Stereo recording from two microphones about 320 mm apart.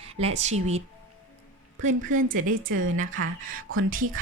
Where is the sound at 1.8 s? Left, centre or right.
Right.